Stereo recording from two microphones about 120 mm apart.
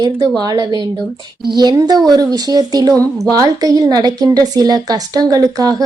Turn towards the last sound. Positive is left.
turn(degrees=-30)  # may be behind; listen again after turning